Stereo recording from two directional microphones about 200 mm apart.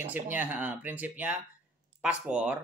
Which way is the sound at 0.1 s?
10° right (ahead or behind).